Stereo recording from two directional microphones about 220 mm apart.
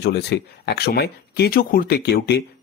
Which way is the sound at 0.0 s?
45° left (ahead or behind).